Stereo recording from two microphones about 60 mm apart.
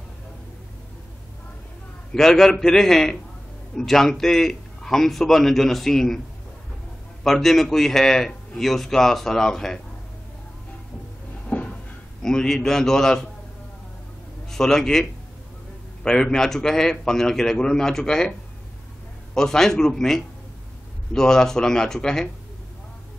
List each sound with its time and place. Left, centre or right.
2.1 s a man's voice: centre
7.2 s a man's voice: centre
11.4 s cupboard open or close: left
12.2 s a man's voice: centre
14.5 s a man's voice: centre
19.3 s a man's voice: centre